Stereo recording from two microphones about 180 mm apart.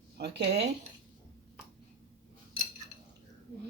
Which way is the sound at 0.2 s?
65° right (ahead or behind).